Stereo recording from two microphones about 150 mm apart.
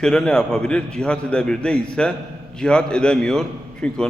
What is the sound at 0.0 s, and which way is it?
A man's voice, 5° left (ahead or behind).